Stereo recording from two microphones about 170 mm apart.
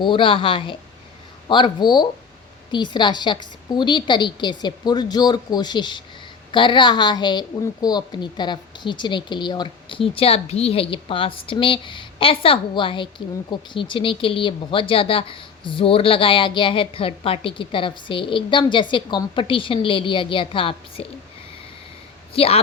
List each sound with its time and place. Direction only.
0.0 s a woman's voice: 30° left (ahead or behind)
22.3 s speech: 35° left (ahead or behind)